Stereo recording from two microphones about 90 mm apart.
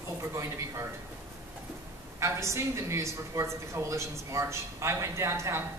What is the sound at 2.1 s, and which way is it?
A woman's voice, 30° right (ahead or behind).